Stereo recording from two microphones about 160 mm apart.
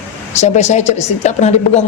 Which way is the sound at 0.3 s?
45° left (ahead or behind).